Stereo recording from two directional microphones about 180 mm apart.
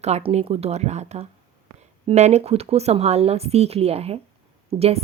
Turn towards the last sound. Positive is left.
turn(degrees=-35)  # may be behind; listen again after turning